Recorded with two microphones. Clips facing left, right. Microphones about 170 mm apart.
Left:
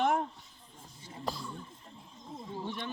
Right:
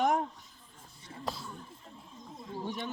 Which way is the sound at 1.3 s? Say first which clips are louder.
Left 1 dB; centre (ahead or behind).